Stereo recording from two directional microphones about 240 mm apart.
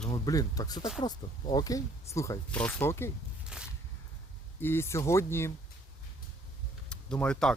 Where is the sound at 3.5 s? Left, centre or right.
Centre.